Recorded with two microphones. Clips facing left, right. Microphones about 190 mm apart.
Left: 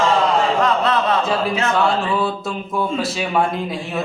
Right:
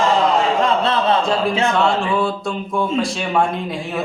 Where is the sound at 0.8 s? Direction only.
30° right (ahead or behind).